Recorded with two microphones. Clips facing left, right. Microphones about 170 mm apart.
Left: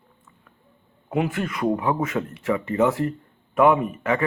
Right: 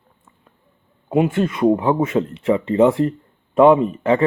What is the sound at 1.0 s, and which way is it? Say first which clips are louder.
Speech: right 7 dB; 25° right (ahead or behind).